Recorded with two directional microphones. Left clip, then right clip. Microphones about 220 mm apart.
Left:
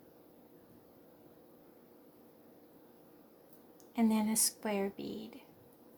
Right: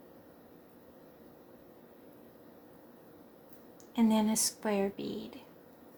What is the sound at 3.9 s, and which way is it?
Speech, 25° left (ahead or behind).